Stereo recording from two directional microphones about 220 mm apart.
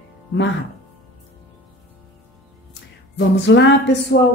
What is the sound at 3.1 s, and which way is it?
Speech, 55° left (ahead or behind).